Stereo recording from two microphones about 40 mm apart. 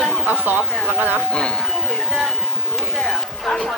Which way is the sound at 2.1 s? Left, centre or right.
Centre.